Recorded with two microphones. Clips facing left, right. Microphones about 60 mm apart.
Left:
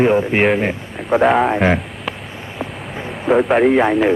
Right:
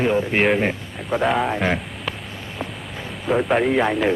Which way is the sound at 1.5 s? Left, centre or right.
Left.